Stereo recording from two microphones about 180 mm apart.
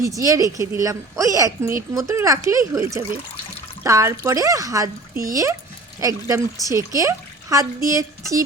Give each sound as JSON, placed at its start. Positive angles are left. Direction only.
{"t": 0.0, "sound": "a woman's voice", "side_deg": -20}